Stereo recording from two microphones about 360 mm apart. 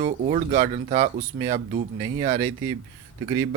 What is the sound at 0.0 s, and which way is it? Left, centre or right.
Speech, centre.